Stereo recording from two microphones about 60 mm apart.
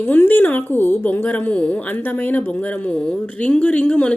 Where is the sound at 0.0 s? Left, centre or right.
Left.